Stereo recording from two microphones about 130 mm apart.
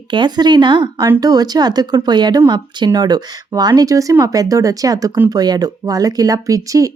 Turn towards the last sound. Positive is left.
turn(degrees=-25)  # may be behind; listen again after turning